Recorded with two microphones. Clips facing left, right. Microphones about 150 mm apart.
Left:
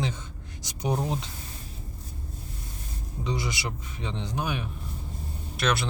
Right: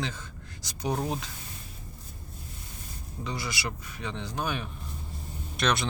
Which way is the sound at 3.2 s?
20° left (ahead or behind).